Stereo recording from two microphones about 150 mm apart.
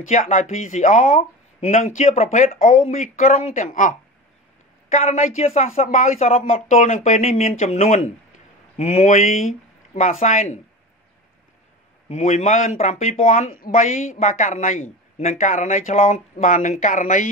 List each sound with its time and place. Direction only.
0.1 s speech: 55° left (ahead or behind)
12.1 s speech: 45° left (ahead or behind)
13.5 s speech: 65° left (ahead or behind)